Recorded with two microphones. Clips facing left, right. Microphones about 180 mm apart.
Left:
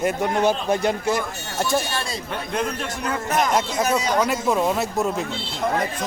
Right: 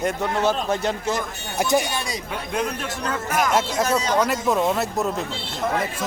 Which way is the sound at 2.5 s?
Centre (ahead or behind).